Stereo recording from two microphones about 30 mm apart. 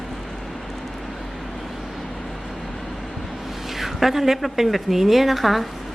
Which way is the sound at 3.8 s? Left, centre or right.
Centre.